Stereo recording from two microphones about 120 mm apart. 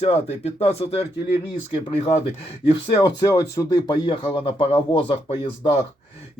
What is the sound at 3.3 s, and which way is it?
Speech, 30° left (ahead or behind).